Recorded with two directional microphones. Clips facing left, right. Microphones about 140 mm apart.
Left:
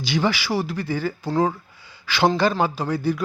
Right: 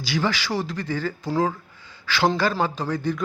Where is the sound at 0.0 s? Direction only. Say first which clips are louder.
Left 2 dB; 20° left (ahead or behind).